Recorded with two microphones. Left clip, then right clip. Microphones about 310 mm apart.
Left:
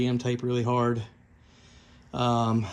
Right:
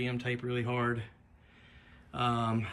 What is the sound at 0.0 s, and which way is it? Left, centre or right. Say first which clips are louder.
Speech: left 6 dB; centre.